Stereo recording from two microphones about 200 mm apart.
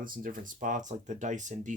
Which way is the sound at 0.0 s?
45° right (ahead or behind).